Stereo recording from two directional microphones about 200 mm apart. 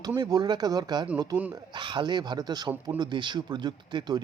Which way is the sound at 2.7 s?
10° right (ahead or behind).